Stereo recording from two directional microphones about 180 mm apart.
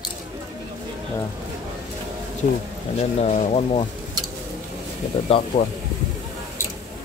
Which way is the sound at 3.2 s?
35° left (ahead or behind).